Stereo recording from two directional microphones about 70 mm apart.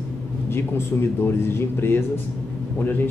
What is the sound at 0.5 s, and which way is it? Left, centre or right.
Speech, left.